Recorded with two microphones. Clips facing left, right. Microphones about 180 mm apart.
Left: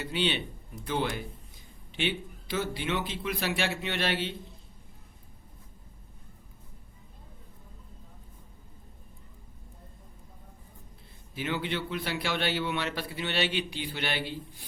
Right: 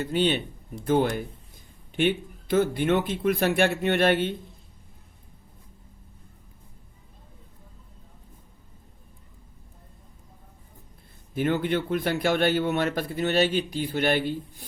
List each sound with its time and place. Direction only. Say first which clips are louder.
0.0 s a man's voice: right 6 dB; 45° right (ahead or behind)
11.3 s a man's voice: right 8 dB; 50° right (ahead or behind)